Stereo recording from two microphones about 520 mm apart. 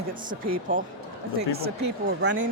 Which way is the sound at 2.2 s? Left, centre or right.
Centre.